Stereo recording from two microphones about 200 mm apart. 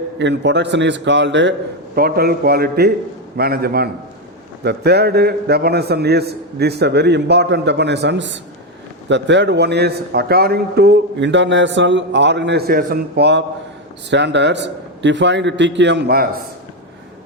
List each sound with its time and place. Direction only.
0.2 s a man's voice: 60° right (ahead or behind)
2.0 s a man's voice: 50° right (ahead or behind)